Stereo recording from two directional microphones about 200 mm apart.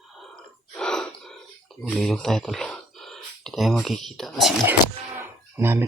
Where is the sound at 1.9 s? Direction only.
Centre (ahead or behind).